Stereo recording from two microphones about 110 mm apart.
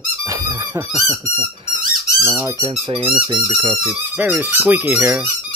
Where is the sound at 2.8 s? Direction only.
55° right (ahead or behind).